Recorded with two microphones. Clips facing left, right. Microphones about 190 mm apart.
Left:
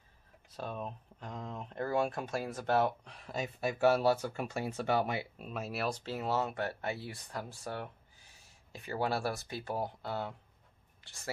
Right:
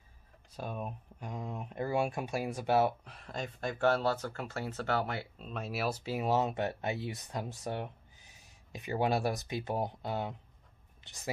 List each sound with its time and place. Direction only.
0.6 s speech: 10° right (ahead or behind)